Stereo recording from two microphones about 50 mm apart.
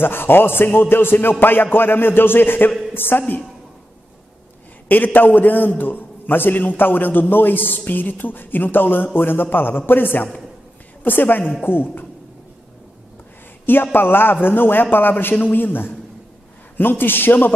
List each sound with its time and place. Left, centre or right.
0.0 s a man's voice: left
4.8 s a man's voice: left
13.9 s a man's voice: left